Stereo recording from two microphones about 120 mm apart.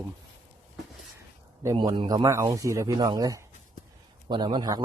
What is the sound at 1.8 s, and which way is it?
Speech, 40° right (ahead or behind).